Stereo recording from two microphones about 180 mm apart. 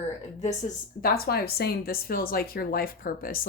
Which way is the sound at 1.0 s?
60° left (ahead or behind).